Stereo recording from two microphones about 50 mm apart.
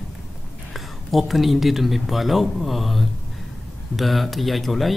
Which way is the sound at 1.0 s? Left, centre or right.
Centre.